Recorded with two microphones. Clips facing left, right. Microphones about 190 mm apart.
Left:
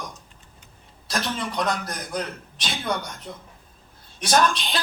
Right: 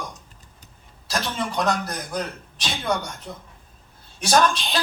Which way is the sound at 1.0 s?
25° right (ahead or behind).